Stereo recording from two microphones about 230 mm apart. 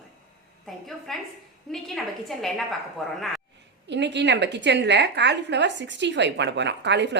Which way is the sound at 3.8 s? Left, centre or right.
Right.